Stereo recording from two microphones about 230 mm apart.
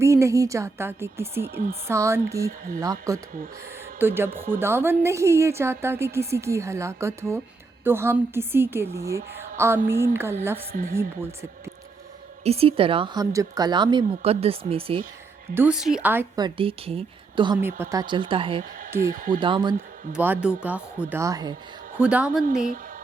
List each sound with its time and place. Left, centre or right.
0.0 s a woman's voice: centre
2.5 s speech: right
2.8 s a woman's voice: centre
4.3 s speech: right
4.6 s a woman's voice: centre
10.7 s speech: right
12.4 s speech: right
15.5 s a woman's voice: centre; by 18.6 s right
19.1 s speech: right
19.4 s speech: right
20.1 s a woman's voice: centre
22.4 s speech: right